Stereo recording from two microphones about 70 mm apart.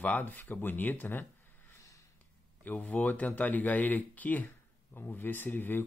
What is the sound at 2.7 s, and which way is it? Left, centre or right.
Speech, left.